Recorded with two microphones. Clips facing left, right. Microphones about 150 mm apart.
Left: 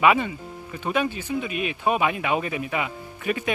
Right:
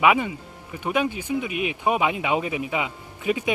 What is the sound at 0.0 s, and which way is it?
Speech, 10° right (ahead or behind).